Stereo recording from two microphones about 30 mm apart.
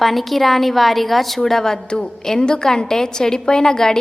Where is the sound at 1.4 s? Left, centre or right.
Centre.